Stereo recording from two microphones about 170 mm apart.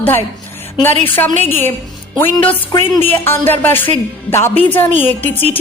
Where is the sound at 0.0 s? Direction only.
10° left (ahead or behind).